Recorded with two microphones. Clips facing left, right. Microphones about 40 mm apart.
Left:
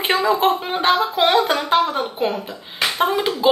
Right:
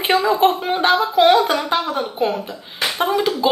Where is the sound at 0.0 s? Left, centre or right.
Centre.